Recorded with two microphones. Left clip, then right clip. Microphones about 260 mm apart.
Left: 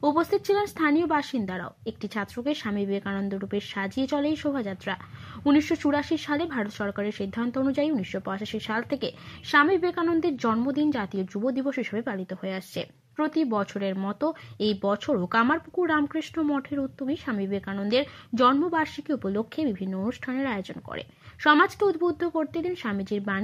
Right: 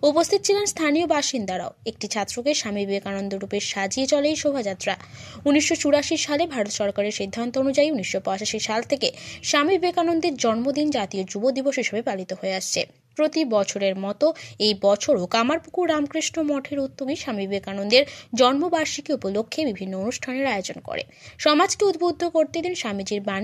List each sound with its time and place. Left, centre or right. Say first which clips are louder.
0.0 s a woman's voice: right 5 dB; centre